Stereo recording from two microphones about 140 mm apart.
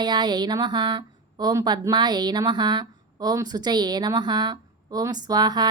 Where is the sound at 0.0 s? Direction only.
30° right (ahead or behind).